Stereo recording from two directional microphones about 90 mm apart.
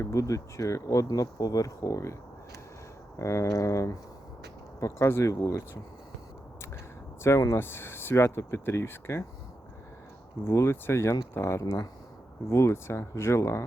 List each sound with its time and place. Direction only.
0.0 s speech: 35° left (ahead or behind)
3.2 s speech: 35° left (ahead or behind)
7.2 s speech: 35° left (ahead or behind)
10.4 s speech: 30° left (ahead or behind)